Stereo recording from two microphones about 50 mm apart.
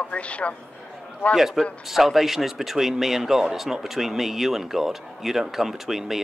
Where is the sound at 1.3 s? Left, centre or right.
Centre.